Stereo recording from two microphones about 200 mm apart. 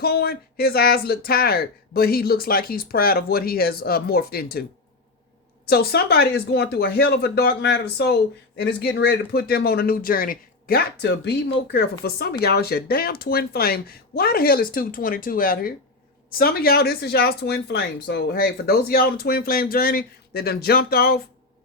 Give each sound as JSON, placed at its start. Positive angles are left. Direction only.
{"t": 0.0, "sound": "speech", "side_deg": 50}
{"t": 5.6, "sound": "speech", "side_deg": 50}